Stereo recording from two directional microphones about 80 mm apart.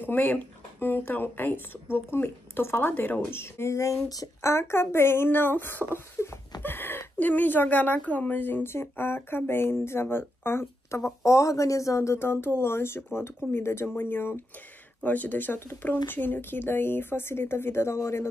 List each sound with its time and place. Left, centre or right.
0.0 s speech: left
11.2 s speech: left